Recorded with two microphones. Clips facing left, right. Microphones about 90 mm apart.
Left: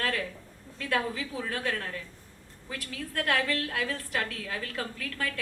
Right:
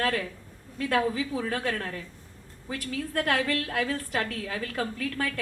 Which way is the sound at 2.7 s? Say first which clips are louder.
Right 5 dB; 40° right (ahead or behind).